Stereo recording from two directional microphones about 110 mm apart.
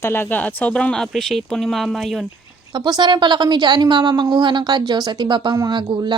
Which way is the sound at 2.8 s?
45° right (ahead or behind).